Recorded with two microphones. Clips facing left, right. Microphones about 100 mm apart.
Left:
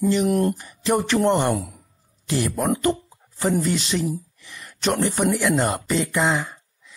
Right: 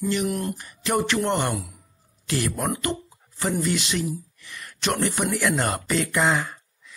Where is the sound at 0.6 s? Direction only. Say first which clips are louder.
Left 2 dB; 25° left (ahead or behind).